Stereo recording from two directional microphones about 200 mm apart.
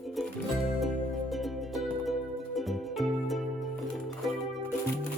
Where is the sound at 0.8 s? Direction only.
Centre (ahead or behind).